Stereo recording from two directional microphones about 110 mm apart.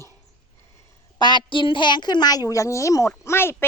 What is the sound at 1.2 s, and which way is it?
A woman's voice, 45° left (ahead or behind).